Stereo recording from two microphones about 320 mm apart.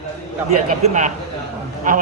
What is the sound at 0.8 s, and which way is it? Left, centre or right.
Speech, right.